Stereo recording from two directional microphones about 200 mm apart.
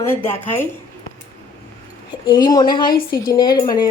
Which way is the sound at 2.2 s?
25° left (ahead or behind).